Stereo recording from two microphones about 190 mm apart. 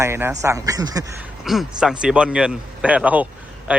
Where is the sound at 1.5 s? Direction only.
5° right (ahead or behind).